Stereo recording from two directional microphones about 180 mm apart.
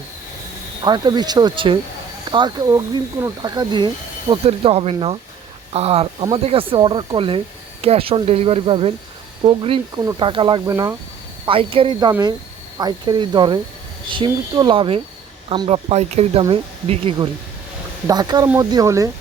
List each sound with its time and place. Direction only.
0.9 s speech: 25° right (ahead or behind)
11.4 s speech: 30° right (ahead or behind)